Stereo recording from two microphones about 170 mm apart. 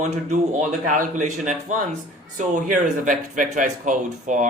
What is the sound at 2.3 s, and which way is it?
A man's voice, 45° right (ahead or behind).